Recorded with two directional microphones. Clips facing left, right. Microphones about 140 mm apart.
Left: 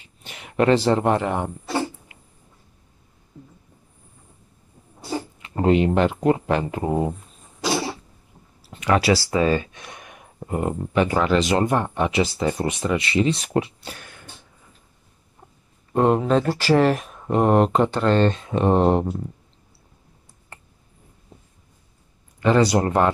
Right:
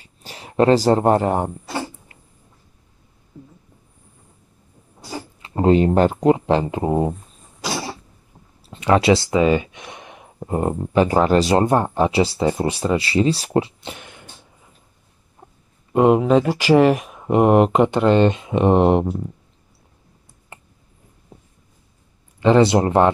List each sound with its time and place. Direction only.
0.0 s speech: 35° right (ahead or behind)
5.4 s a sound: 30° right (ahead or behind)
6.2 s speech: 25° right (ahead or behind)
8.6 s a sound: 25° right (ahead or behind)
10.6 s speech: 35° right (ahead or behind)
15.9 s speech: 5° right (ahead or behind)
22.4 s speech: 25° right (ahead or behind)